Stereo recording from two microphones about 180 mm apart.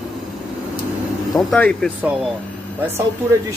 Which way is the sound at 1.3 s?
5° left (ahead or behind).